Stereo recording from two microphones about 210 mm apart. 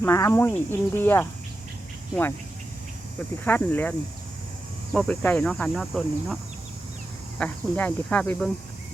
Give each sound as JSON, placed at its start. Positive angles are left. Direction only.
{"t": 0.0, "sound": "speech", "side_deg": 15}
{"t": 3.4, "sound": "speech", "side_deg": 10}
{"t": 4.9, "sound": "speech", "side_deg": 5}